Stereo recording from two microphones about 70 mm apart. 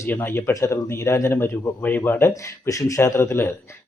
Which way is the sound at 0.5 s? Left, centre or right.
Left.